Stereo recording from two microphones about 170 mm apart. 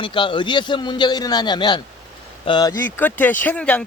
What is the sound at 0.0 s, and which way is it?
A man's voice, 30° left (ahead or behind).